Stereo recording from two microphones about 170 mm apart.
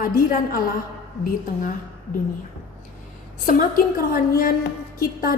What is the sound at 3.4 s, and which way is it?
A woman's voice, 55° left (ahead or behind).